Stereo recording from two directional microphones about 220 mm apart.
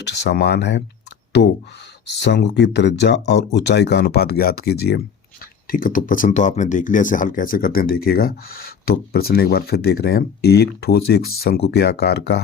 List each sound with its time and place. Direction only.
0.0 s speech: 50° left (ahead or behind)
2.2 s speech: 50° left (ahead or behind)